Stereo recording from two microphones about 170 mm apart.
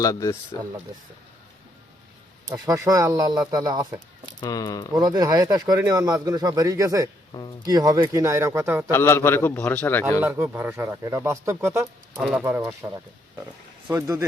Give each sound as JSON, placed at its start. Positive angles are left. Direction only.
{"t": 0.0, "sound": "speech", "side_deg": 20}
{"t": 2.5, "sound": "speech", "side_deg": -20}
{"t": 4.4, "sound": "speech", "side_deg": 20}
{"t": 4.9, "sound": "speech", "side_deg": -25}
{"t": 8.9, "sound": "a man's voice", "side_deg": 15}
{"t": 10.2, "sound": "speech", "side_deg": -10}
{"t": 13.9, "sound": "speech", "side_deg": -15}